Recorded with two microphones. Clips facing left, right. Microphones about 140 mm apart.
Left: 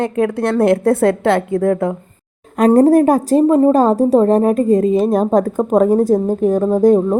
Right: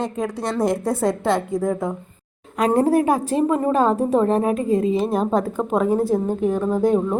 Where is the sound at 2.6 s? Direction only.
45° left (ahead or behind).